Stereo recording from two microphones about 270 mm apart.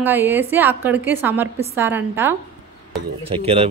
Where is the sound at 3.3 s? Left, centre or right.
Right.